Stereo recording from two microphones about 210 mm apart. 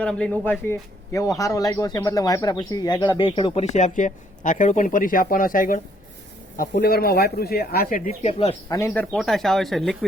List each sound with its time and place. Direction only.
0.0 s a man's voice: 5° left (ahead or behind); by 8.5 s 30° left (ahead or behind)
8.7 s speech: 10° left (ahead or behind)